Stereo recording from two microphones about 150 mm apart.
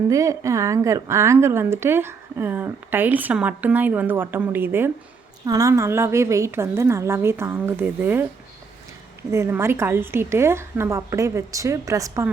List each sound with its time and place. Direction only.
0.1 s a woman's voice: 20° right (ahead or behind)
9.3 s a woman's voice: 15° right (ahead or behind)